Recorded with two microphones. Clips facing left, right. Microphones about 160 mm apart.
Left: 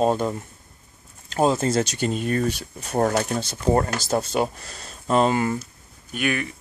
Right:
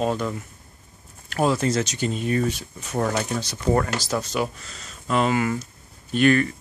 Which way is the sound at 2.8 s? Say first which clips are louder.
Left 3 dB; 40° left (ahead or behind).